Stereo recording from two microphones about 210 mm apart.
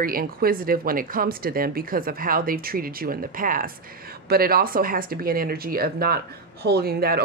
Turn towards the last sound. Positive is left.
turn(degrees=-45)  # may be behind; listen again after turning